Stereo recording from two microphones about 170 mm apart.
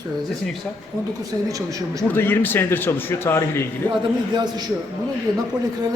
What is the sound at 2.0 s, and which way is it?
Speech, 10° left (ahead or behind).